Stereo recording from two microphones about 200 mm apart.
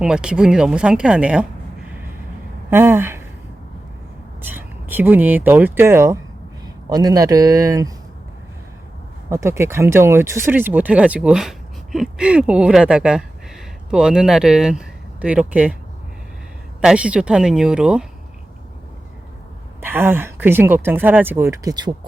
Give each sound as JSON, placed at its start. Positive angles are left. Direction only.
{"t": 0.0, "sound": "speech", "side_deg": -5}
{"t": 2.6, "sound": "speech", "side_deg": -10}
{"t": 4.4, "sound": "speech", "side_deg": -10}
{"t": 9.3, "sound": "speech", "side_deg": -15}
{"t": 16.8, "sound": "speech", "side_deg": -5}
{"t": 19.8, "sound": "speech", "side_deg": -10}